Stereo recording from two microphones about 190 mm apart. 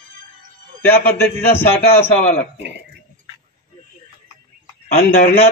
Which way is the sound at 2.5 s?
65° right (ahead or behind).